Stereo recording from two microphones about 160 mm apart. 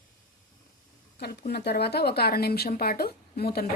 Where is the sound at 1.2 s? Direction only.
75° left (ahead or behind).